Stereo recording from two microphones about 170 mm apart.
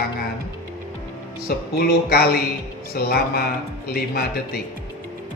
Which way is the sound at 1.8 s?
65° left (ahead or behind).